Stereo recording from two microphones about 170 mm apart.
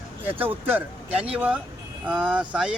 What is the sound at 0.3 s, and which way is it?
Speech, 10° right (ahead or behind).